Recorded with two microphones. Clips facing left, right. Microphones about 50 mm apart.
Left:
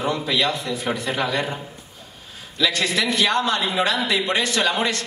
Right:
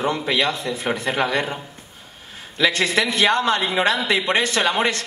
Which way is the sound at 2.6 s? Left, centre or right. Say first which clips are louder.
Right 3 dB; right.